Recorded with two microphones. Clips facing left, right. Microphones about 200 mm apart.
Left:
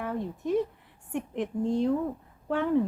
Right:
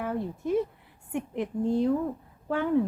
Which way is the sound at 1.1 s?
Centre (ahead or behind).